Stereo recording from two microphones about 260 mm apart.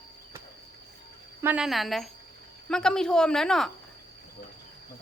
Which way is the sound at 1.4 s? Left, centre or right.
Centre.